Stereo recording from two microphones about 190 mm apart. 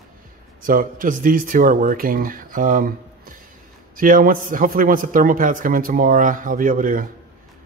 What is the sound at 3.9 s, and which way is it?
Speech, 45° right (ahead or behind).